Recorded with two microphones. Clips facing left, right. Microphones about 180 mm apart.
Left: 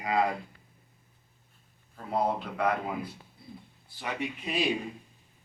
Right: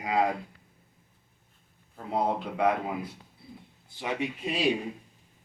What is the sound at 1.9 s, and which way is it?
A man's voice, 20° right (ahead or behind).